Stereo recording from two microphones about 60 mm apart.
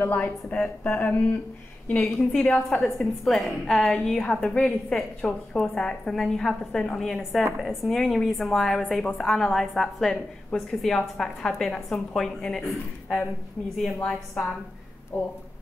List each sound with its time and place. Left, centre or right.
0.0 s speech: left
2.0 s a woman's voice: centre
2.3 s speech: left
3.0 s a woman's voice: centre
14.0 s a woman's voice: centre
15.1 s speech: left